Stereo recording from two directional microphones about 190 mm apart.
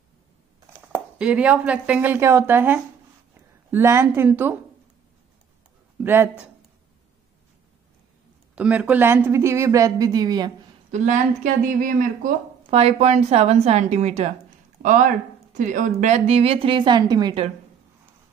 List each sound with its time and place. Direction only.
0.9 s a woman's voice: 5° right (ahead or behind)
6.0 s speech: 10° right (ahead or behind)
8.5 s speech: 5° right (ahead or behind)
10.9 s speech: 40° right (ahead or behind); by 17.5 s 25° right (ahead or behind)